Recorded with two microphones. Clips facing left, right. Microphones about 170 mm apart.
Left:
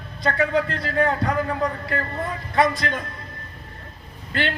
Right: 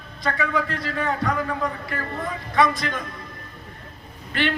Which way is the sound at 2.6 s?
35° left (ahead or behind).